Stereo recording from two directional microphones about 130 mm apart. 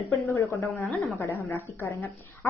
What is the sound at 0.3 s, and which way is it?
A woman's voice, 20° left (ahead or behind).